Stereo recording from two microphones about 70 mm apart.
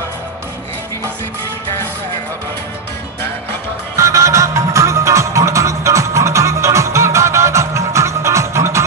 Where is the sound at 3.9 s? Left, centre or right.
Right.